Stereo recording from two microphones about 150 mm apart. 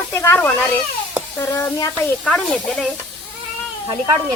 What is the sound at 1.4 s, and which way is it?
Snake, 25° left (ahead or behind).